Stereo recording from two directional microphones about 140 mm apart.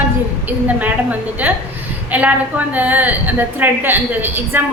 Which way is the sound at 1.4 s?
10° right (ahead or behind).